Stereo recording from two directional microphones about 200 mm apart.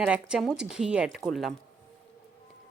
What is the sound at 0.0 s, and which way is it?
A woman's voice, 5° right (ahead or behind).